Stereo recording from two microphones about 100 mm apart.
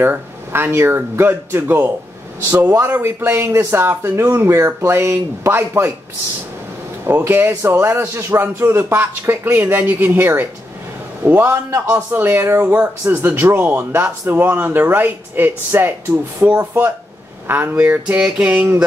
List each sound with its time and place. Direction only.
0.0 s speech: 20° right (ahead or behind)
7.1 s speech: 20° right (ahead or behind)
17.5 s a sound: 20° right (ahead or behind)